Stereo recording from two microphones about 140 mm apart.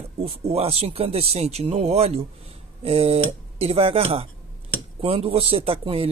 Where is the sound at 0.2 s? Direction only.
45° right (ahead or behind).